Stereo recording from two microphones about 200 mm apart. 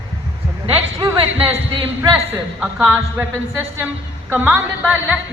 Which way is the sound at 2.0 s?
5° right (ahead or behind).